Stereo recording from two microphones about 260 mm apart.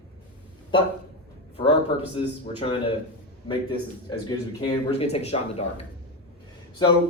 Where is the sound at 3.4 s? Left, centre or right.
Centre.